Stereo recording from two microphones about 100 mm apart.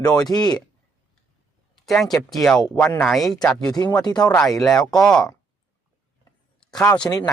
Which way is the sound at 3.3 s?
40° left (ahead or behind).